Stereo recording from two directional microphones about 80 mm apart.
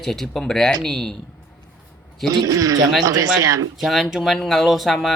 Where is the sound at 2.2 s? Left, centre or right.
Right.